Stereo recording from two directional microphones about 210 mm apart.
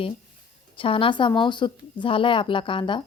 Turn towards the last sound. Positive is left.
turn(degrees=25)  # may be behind; listen again after turning